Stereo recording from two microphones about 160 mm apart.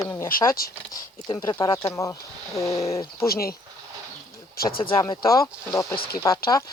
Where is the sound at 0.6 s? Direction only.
65° left (ahead or behind).